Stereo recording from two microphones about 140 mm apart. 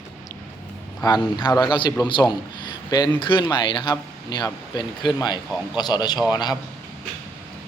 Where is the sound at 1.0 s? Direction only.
30° left (ahead or behind).